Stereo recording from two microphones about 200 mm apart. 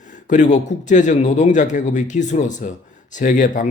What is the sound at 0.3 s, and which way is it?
A man's voice, 35° left (ahead or behind).